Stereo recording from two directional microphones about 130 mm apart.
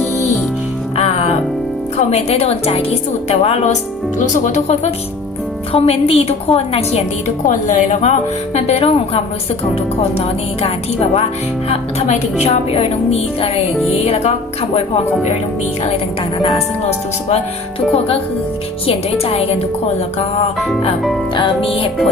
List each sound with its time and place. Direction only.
0.9 s music: 55° left (ahead or behind)
2.0 s a woman's voice: 55° left (ahead or behind)
5.7 s a woman's voice: 50° left (ahead or behind); by 8.1 s 65° left (ahead or behind)
8.5 s a woman's voice: 55° left (ahead or behind)
16.4 s a woman's voice: 50° left (ahead or behind)
21.3 s a woman's voice: 40° left (ahead or behind)